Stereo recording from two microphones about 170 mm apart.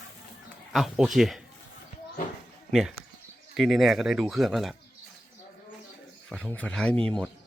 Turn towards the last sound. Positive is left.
turn(degrees=5)  # may be behind; listen again after turning